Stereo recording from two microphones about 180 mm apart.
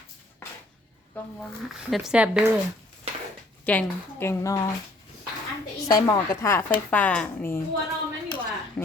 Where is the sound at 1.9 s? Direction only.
5° right (ahead or behind).